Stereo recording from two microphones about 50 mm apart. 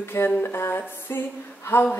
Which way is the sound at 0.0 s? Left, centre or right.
Left.